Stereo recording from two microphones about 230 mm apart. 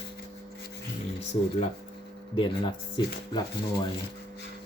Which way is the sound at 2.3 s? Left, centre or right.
Left.